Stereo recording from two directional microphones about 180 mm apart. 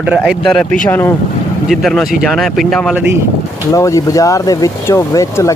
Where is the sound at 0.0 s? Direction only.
5° right (ahead or behind); by 1.1 s 10° left (ahead or behind).